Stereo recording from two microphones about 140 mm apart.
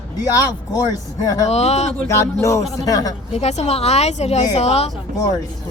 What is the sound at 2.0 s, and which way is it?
Music, 20° left (ahead or behind).